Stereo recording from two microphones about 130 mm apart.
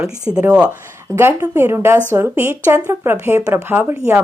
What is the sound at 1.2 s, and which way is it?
Speech, 20° right (ahead or behind).